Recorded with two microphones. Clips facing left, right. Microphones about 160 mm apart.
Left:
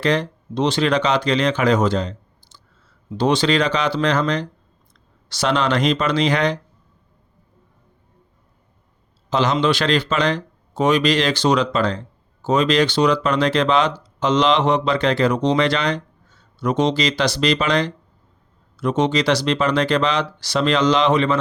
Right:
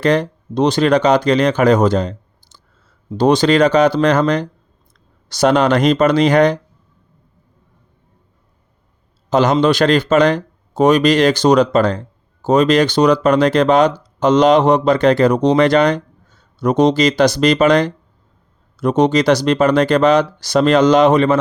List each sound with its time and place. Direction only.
0.0 s speech: 45° right (ahead or behind)
9.3 s speech: 45° right (ahead or behind)